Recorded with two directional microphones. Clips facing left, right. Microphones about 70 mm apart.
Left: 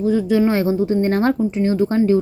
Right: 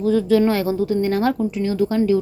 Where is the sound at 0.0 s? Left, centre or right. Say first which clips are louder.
Even; centre.